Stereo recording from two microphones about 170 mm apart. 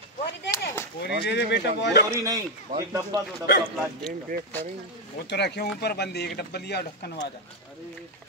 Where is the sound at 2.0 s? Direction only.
20° right (ahead or behind).